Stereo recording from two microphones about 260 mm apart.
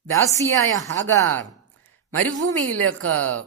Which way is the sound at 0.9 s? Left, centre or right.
Right.